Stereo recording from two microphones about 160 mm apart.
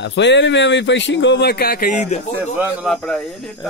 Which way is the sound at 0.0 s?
90° left.